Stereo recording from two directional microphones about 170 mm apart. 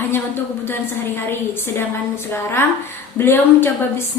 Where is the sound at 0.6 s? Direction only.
15° left (ahead or behind).